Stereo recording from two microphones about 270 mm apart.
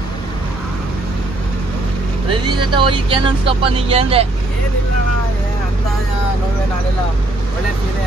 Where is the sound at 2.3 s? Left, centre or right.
Centre.